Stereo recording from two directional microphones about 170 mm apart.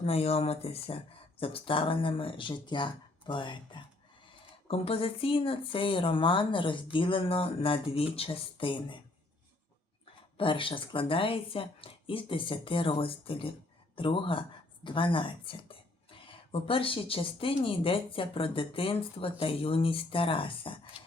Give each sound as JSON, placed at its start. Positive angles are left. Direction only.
{"t": 0.0, "sound": "speech", "side_deg": 35}
{"t": 10.3, "sound": "speech", "side_deg": 30}